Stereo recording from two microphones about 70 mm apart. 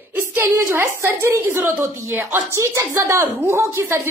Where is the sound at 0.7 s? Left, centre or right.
Right.